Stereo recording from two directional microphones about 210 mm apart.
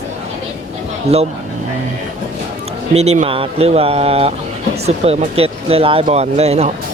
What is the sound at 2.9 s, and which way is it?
Speech, 30° right (ahead or behind).